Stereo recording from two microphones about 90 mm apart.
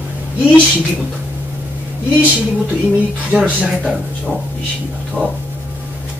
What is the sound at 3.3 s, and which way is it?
Speech, 10° right (ahead or behind).